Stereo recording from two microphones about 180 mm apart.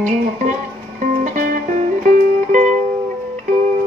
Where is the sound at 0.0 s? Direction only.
45° right (ahead or behind).